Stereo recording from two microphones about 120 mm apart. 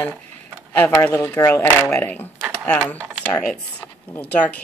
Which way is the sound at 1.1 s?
25° left (ahead or behind).